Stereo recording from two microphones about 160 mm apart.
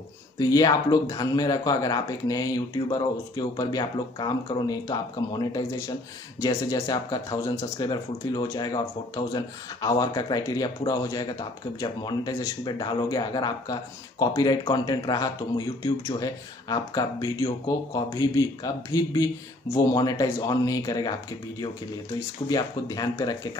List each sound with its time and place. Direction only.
0.4 s speech: 25° left (ahead or behind)
22.5 s speech: 25° left (ahead or behind)